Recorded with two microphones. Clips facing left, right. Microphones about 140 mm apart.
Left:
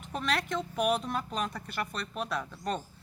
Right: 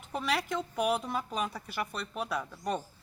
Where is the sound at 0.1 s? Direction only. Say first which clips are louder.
Even; 5° right (ahead or behind).